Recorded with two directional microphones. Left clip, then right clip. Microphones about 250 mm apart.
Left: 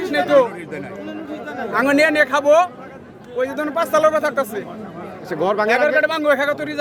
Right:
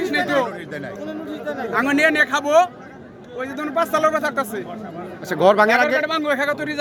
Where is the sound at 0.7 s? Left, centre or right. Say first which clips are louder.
Even; right.